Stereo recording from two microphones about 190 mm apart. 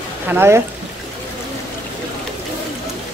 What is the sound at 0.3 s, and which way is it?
Speech, 10° right (ahead or behind).